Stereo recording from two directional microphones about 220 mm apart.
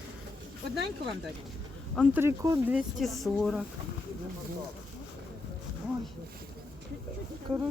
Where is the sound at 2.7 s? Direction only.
Centre (ahead or behind).